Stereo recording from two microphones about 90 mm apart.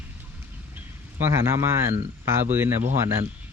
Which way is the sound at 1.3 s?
30° right (ahead or behind).